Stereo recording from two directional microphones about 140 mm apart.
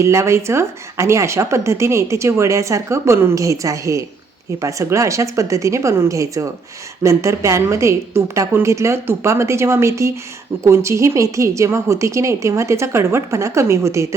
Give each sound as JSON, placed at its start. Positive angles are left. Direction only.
{"t": 0.0, "sound": "a woman's voice", "side_deg": -20}